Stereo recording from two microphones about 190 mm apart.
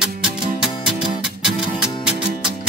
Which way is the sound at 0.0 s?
5° right (ahead or behind).